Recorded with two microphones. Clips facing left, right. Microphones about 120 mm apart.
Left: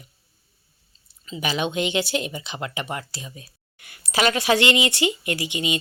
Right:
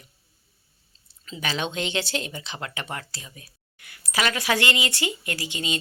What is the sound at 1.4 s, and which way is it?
Speech, 15° left (ahead or behind).